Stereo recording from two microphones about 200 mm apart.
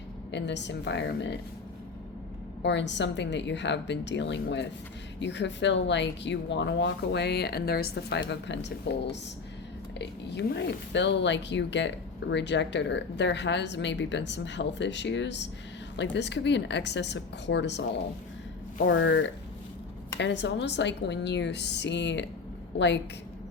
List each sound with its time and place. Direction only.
0.3 s speech: 60° left (ahead or behind)
2.6 s speech: 60° left (ahead or behind)
18.9 s speech: 65° left (ahead or behind)